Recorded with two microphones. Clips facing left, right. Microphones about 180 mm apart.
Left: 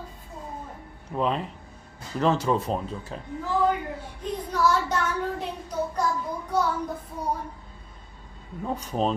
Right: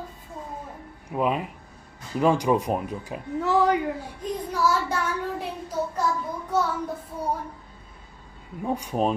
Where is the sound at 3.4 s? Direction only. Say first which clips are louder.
Right 3 dB; 80° right.